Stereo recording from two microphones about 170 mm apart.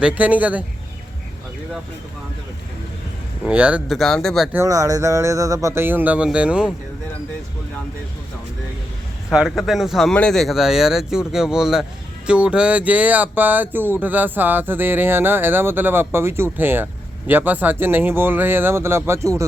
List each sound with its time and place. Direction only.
0.0 s speech: 10° right (ahead or behind)
3.4 s speech: 10° right (ahead or behind)
4.5 s speech: 20° right (ahead or behind)
9.3 s speech: centre (ahead or behind); by 19.5 s 15° right (ahead or behind)